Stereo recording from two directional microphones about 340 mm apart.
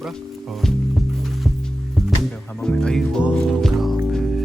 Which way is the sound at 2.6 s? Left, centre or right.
Centre.